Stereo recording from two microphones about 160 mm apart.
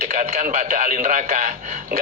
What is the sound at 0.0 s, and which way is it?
A man's voice, 50° right (ahead or behind).